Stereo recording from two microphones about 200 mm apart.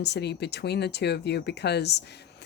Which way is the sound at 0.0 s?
55° left (ahead or behind).